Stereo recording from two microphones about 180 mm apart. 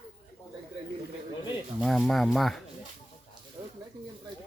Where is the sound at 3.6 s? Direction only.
25° right (ahead or behind).